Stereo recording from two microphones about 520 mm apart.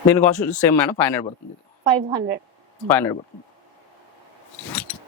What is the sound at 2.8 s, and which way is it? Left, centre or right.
Speech, centre.